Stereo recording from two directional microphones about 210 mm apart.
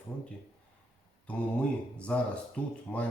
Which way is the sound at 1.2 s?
5° left (ahead or behind).